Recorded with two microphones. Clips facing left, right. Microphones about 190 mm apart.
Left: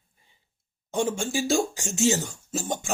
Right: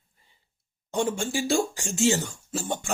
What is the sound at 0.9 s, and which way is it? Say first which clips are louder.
Speech: even; 20° left (ahead or behind).